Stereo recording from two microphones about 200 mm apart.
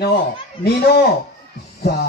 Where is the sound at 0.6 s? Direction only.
50° left (ahead or behind).